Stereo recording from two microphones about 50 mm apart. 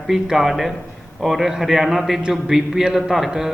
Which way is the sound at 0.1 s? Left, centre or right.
Centre.